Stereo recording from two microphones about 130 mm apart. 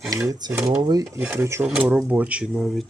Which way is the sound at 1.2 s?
15° right (ahead or behind).